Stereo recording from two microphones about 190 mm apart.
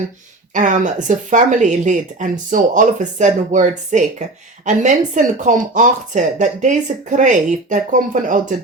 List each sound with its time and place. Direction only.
0.5 s speech: 40° right (ahead or behind)